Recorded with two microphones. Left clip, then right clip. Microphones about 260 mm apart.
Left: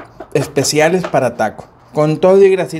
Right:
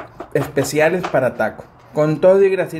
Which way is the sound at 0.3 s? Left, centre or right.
Centre.